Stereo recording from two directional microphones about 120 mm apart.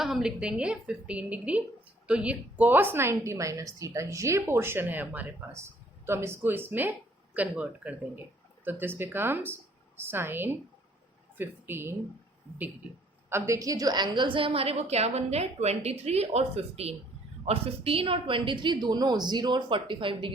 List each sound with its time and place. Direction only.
0.0 s a woman's voice: 5° right (ahead or behind)
13.3 s a woman's voice: 25° right (ahead or behind); by 20.3 s 45° right (ahead or behind)